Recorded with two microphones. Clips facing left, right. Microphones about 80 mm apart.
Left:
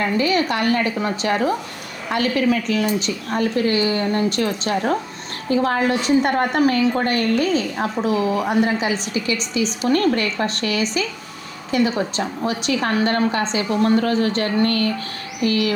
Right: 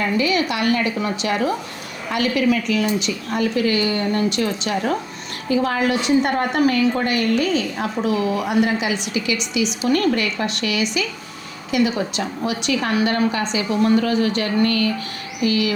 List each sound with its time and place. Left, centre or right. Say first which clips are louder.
0.0 s a woman's voice: left 1 dB; left